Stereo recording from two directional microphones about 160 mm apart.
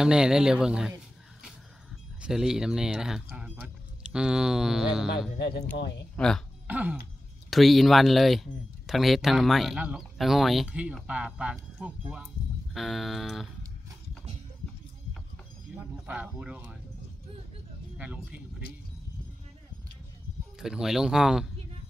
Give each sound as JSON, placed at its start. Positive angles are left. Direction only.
{"t": 0.0, "sound": "speech", "side_deg": -5}
{"t": 2.2, "sound": "speech", "side_deg": -5}
{"t": 5.8, "sound": "speech", "side_deg": 90}
{"t": 6.1, "sound": "speech", "side_deg": 5}
{"t": 6.7, "sound": "speech", "side_deg": -10}
{"t": 15.7, "sound": "speech", "side_deg": -10}
{"t": 17.9, "sound": "speech", "side_deg": -10}
{"t": 20.5, "sound": "speech", "side_deg": -5}